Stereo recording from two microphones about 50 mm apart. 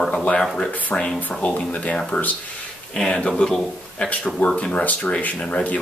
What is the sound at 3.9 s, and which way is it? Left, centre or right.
Speech, left.